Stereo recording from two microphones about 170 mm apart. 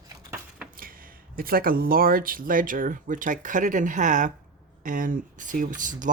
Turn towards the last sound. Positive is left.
turn(degrees=-50)  # may be behind; listen again after turning